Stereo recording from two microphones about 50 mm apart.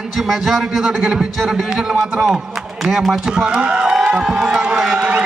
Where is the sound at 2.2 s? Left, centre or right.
Centre.